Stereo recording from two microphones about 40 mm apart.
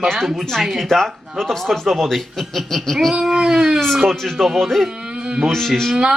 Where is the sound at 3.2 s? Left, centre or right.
Centre.